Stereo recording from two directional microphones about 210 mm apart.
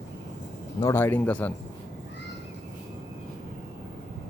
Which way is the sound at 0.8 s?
10° left (ahead or behind).